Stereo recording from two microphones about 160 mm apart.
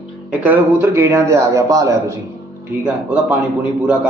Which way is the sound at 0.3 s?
10° right (ahead or behind).